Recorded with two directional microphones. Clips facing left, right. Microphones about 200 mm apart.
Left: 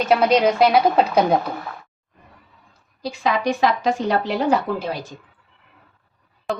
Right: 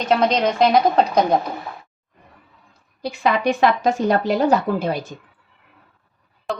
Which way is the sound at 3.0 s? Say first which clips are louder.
Right 2 dB; 55° right (ahead or behind).